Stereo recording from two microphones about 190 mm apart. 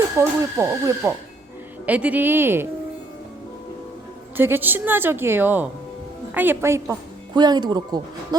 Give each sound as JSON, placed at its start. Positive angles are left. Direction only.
{"t": 0.2, "sound": "a woman's voice", "side_deg": -15}
{"t": 4.4, "sound": "a woman's voice", "side_deg": -10}